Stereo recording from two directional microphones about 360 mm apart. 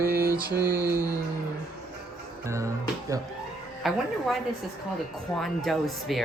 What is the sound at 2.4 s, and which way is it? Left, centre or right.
Music, centre.